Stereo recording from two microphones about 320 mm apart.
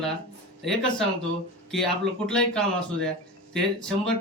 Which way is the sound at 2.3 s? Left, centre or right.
Centre.